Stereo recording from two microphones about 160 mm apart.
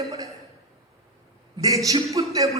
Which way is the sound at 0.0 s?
20° right (ahead or behind).